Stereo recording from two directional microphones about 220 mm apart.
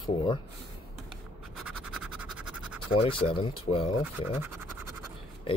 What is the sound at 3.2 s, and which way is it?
Speech, 25° left (ahead or behind).